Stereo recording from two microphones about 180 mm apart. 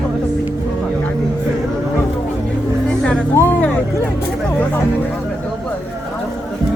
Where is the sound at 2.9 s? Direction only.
5° left (ahead or behind).